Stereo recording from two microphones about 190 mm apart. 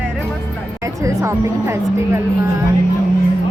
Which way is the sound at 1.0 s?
15° right (ahead or behind).